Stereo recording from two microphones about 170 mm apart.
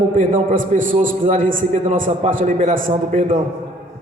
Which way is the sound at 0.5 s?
50° right (ahead or behind).